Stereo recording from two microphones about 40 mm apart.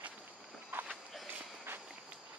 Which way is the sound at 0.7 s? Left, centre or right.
Right.